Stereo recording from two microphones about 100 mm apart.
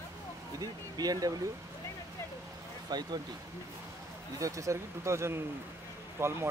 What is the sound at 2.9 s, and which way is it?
Speech, 45° right (ahead or behind).